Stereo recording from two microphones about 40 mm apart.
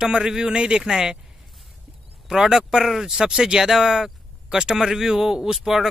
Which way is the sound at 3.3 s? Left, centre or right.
Centre.